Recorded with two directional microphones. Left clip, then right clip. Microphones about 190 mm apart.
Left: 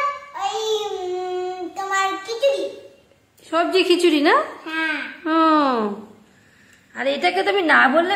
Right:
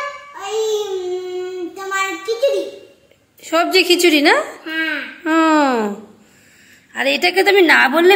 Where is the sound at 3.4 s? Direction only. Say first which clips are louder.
Right 4 dB; 10° right (ahead or behind).